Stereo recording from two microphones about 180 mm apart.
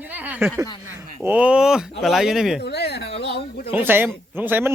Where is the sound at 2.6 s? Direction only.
65° left (ahead or behind).